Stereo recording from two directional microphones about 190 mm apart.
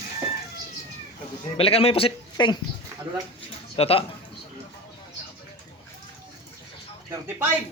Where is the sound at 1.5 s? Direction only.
30° left (ahead or behind).